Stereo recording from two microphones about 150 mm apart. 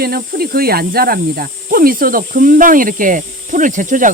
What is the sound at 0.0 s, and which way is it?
Snake, 90° right.